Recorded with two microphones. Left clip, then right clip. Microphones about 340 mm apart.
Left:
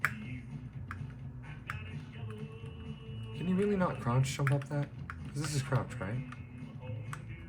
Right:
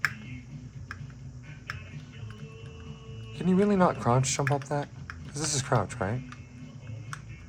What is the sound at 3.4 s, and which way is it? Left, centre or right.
Speech, centre.